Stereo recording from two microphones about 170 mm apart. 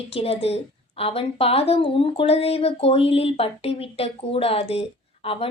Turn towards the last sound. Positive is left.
turn(degrees=35)  # may be behind; listen again after turning